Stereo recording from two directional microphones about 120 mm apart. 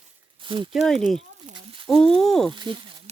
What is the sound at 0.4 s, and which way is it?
Speech, 40° right (ahead or behind).